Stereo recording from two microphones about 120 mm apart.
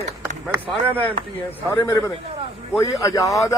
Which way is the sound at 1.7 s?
25° left (ahead or behind).